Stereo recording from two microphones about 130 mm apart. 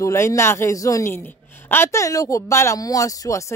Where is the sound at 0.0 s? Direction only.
20° left (ahead or behind).